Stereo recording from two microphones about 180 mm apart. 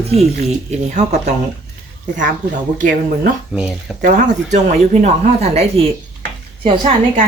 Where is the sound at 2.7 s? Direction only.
45° right (ahead or behind).